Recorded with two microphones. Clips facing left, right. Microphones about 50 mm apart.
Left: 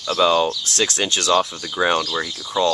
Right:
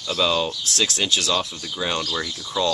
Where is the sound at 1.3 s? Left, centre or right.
Left.